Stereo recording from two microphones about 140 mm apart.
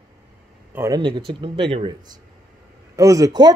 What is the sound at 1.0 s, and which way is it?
Speech, 35° right (ahead or behind).